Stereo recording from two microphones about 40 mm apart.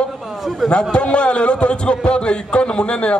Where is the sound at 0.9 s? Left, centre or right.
Left.